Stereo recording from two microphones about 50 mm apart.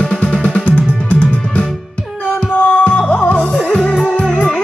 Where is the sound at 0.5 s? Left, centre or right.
Left.